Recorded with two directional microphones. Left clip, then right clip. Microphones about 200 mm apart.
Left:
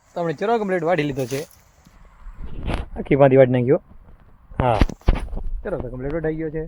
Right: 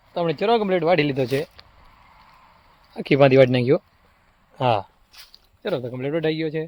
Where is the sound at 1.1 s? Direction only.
30° right (ahead or behind).